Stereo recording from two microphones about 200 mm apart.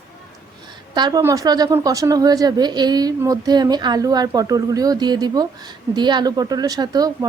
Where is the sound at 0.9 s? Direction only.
20° right (ahead or behind).